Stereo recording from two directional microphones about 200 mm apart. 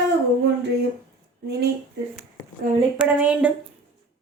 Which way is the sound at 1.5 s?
55° right (ahead or behind).